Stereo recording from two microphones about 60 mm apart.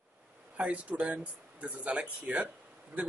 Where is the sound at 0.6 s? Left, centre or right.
Right.